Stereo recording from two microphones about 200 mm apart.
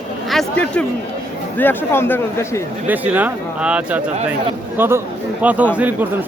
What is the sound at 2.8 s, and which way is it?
Speech, 10° right (ahead or behind).